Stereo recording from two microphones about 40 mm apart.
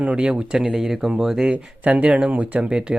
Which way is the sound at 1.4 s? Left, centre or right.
Right.